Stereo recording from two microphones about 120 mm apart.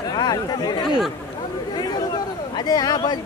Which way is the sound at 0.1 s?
35° left (ahead or behind).